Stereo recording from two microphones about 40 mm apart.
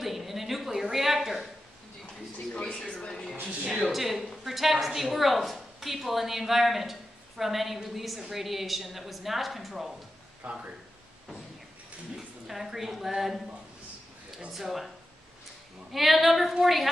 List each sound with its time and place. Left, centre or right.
0.0 s a sound: centre
2.5 s speech: centre
3.1 s a sound: centre
3.8 s a woman's voice: centre
10.4 s a man's voice: right
12.2 s a woman's voice: centre
14.5 s a woman's voice: centre
15.9 s a woman's voice: centre